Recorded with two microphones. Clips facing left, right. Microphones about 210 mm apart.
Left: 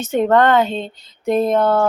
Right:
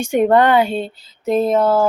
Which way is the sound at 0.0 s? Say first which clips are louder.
Right 1 dB; 15° right (ahead or behind).